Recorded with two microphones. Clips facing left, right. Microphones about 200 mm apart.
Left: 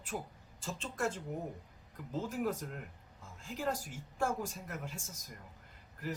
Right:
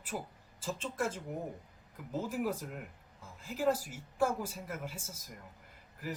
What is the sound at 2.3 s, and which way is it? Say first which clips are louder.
Speech: right 1 dB; 5° right (ahead or behind).